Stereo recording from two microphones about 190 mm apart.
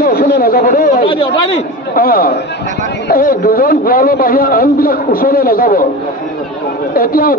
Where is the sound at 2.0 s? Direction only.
50° left (ahead or behind).